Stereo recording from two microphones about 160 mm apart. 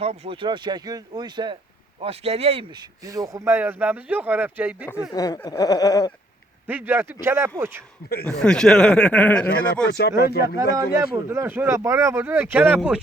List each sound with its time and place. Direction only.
0.0 s speech: 35° right (ahead or behind)
2.0 s speech: 40° right (ahead or behind)
3.1 s speech: 20° right (ahead or behind)
5.1 s chuckle: 25° left (ahead or behind)
6.7 s speech: 10° right (ahead or behind)
8.2 s speech: 5° left (ahead or behind)
9.9 s speech: 80° left
10.4 s speech: 20° right (ahead or behind)